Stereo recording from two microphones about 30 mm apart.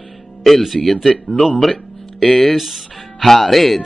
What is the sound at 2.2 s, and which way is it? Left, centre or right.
Speech, left.